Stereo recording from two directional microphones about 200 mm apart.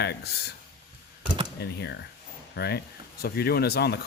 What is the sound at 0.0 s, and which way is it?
Speech, 55° left (ahead or behind).